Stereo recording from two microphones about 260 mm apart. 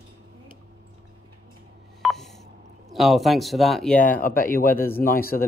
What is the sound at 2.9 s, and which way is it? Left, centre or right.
Speech, centre.